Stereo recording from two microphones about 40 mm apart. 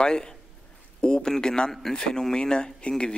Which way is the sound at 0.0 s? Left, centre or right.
Centre.